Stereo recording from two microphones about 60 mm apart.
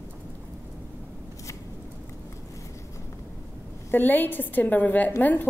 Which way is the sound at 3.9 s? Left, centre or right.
Left.